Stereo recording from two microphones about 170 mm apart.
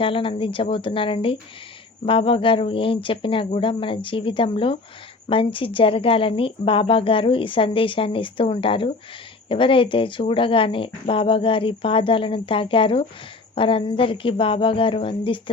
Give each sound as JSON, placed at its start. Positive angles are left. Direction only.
{"t": 0.0, "sound": "speech", "side_deg": 30}